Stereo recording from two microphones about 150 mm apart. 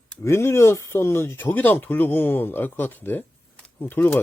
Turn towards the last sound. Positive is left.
turn(degrees=10)  # may be behind; listen again after turning